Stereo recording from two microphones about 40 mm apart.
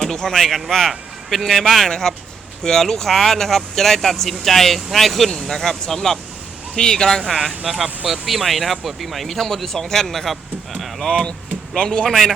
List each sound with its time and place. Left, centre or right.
0.0 s a man's voice: centre
11.8 s speech: left